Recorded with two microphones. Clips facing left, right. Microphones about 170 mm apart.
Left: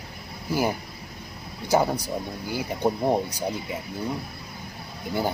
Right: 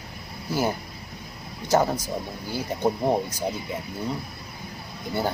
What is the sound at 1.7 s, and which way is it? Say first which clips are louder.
Speech: even; 10° left (ahead or behind).